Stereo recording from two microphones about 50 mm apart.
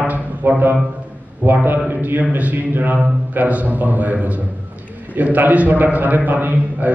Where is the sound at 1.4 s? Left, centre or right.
Right.